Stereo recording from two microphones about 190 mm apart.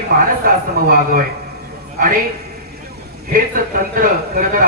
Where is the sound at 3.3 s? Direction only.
45° right (ahead or behind).